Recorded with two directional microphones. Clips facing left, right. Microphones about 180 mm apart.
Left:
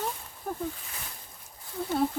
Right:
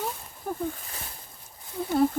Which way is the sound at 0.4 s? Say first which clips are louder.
Right 2 dB; centre (ahead or behind).